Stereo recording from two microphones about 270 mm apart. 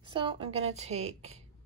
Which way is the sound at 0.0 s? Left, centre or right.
Centre.